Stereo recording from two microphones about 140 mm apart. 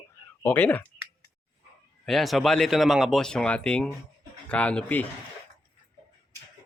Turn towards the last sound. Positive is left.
turn(degrees=10)  # may be behind; listen again after turning